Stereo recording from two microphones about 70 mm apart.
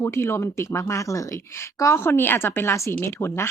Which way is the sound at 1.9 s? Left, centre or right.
Left.